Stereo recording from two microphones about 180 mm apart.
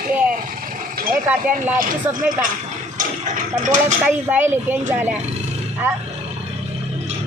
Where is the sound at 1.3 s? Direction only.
5° right (ahead or behind).